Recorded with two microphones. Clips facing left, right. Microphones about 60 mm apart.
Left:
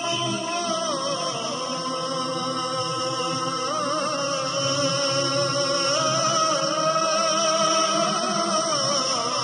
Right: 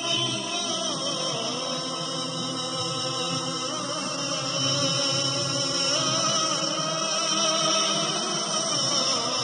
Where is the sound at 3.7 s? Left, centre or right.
Left.